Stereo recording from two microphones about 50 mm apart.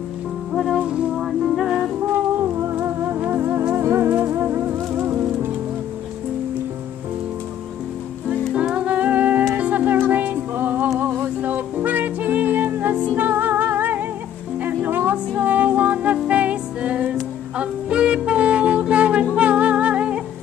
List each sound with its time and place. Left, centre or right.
0.5 s music: centre
0.7 s music: right
2.8 s music: right
3.7 s music: right
4.5 s music: right
4.7 s music: right
8.7 s music: right